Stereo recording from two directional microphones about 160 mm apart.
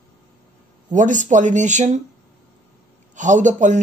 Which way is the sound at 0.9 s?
50° right (ahead or behind).